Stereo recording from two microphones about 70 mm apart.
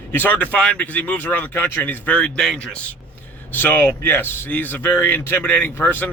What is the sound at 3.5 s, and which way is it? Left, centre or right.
Speech, left.